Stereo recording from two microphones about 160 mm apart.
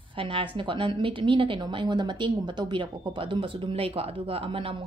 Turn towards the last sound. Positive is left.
turn(degrees=-35)  # may be behind; listen again after turning